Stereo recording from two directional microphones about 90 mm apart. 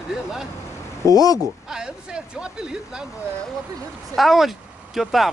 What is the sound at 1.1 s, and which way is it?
Speech, 45° left (ahead or behind).